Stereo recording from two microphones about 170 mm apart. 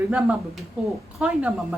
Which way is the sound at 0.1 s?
5° right (ahead or behind).